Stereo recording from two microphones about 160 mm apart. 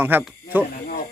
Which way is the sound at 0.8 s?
60° left (ahead or behind).